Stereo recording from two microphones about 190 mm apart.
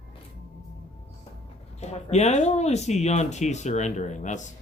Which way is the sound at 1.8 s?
35° left (ahead or behind).